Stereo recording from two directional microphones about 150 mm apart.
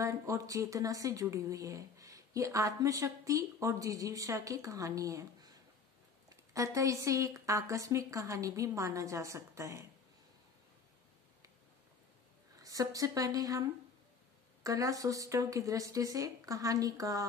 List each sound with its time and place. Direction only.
0.0 s speech: 20° right (ahead or behind)
12.5 s speech: 25° right (ahead or behind)